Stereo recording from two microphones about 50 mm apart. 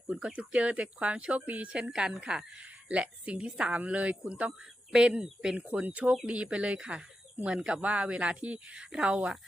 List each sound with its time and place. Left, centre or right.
0.1 s speech: right
2.6 s speech: right
4.9 s speech: centre
5.6 s speech: right; by 9.4 s centre